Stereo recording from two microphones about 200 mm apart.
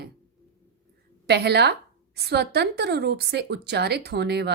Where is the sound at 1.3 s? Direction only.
55° right (ahead or behind).